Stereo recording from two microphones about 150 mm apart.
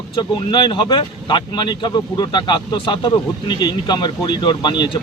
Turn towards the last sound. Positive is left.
turn(degrees=30)  # may be behind; listen again after turning